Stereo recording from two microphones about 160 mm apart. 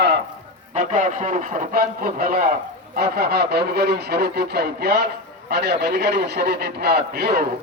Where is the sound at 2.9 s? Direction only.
80° right.